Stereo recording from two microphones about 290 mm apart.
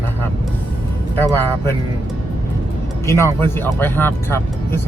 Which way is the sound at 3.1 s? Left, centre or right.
Centre.